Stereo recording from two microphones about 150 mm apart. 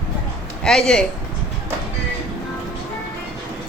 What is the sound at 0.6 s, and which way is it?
Speech, 5° left (ahead or behind).